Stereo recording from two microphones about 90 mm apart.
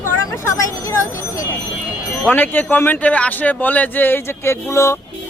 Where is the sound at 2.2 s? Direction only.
20° left (ahead or behind).